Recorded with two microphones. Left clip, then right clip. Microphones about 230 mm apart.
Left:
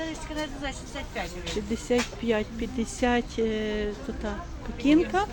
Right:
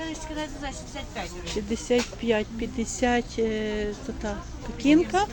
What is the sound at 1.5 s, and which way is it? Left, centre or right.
Speech, centre.